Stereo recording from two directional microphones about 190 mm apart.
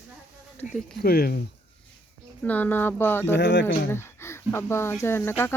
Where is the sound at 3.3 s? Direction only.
70° left (ahead or behind).